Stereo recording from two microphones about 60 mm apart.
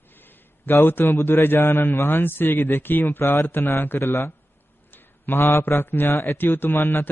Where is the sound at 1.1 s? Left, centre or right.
Left.